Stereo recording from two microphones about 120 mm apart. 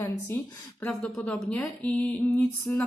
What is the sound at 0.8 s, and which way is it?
Music, 10° left (ahead or behind).